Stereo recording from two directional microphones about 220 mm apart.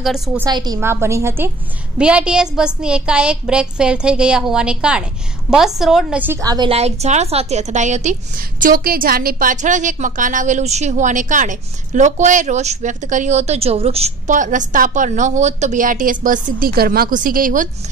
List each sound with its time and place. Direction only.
0.0 s a woman's voice: centre (ahead or behind)
0.5 s a woman's voice: 20° right (ahead or behind); by 17.6 s 40° right (ahead or behind)